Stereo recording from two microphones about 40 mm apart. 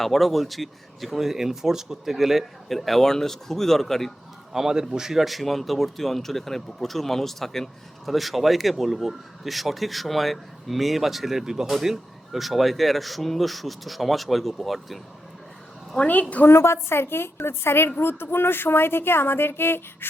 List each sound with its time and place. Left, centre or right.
0.0 s speech: centre
4.5 s a man's voice: centre
5.2 s speech: centre
16.0 s a woman's voice: left
16.5 s a woman's voice: left
18.0 s a woman's voice: left